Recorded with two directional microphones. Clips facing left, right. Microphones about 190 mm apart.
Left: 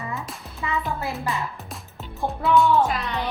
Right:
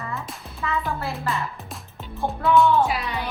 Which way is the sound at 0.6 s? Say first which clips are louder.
Right 1 dB; 15° left (ahead or behind).